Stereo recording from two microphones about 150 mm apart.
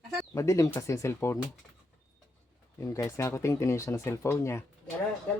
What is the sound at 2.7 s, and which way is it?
Speech, 20° left (ahead or behind).